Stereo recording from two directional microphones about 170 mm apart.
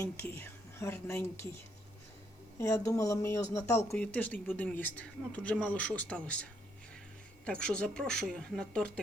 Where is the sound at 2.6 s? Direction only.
20° left (ahead or behind).